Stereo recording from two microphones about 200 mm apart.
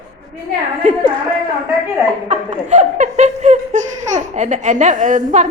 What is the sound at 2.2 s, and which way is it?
Laughter, 35° right (ahead or behind).